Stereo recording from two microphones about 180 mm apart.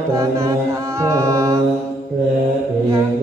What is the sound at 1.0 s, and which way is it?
Mantra, 15° right (ahead or behind).